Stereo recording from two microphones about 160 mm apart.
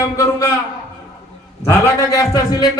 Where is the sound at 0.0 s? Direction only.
20° left (ahead or behind).